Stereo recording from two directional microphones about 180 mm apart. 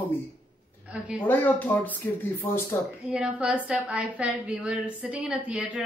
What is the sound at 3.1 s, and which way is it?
A woman's voice, 5° right (ahead or behind).